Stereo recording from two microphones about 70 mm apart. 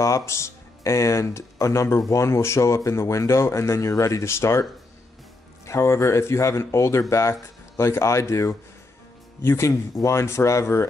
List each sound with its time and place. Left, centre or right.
0.3 s speech: left
5.7 s speech: left